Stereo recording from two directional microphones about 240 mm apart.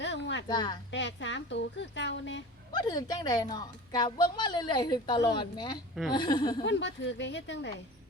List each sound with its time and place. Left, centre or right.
0.0 s a sound: left
0.4 s a woman's voice: centre
0.9 s speech: left
2.7 s a woman's voice: centre
6.7 s speech: left